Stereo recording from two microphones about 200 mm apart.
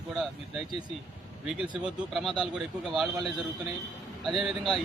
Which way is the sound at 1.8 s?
5° right (ahead or behind).